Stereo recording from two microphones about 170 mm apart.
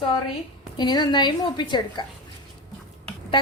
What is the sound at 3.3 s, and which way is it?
Speech, 25° left (ahead or behind).